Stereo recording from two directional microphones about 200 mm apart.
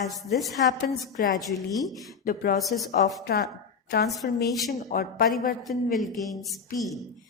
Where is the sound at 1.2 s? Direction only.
45° left (ahead or behind).